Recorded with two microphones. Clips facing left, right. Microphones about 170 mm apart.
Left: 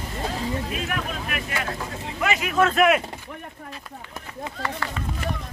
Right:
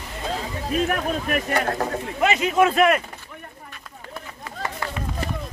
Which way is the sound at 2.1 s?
25° right (ahead or behind).